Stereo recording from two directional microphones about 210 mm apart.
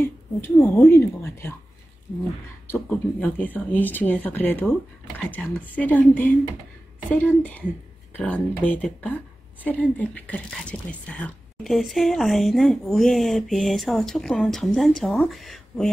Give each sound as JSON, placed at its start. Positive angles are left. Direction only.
{"t": 0.0, "sound": "speech", "side_deg": 10}
{"t": 2.7, "sound": "speech", "side_deg": 5}